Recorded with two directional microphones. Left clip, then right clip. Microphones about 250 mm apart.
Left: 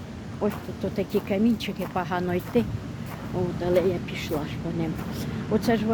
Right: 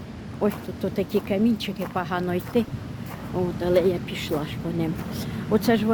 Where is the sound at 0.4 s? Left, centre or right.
Right.